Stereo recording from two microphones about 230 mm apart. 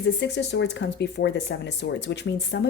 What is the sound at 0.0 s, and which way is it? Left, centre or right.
Speech, left.